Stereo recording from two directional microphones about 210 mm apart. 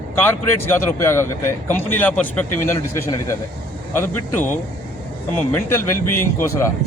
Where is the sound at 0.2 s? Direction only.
10° left (ahead or behind).